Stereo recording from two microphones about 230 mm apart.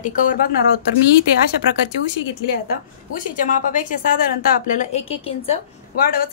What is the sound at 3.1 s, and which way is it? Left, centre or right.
A woman's voice, left.